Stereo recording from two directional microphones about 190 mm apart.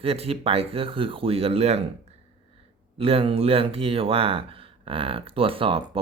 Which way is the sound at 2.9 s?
30° right (ahead or behind).